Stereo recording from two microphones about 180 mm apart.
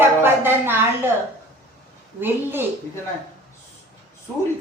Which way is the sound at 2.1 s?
10° right (ahead or behind).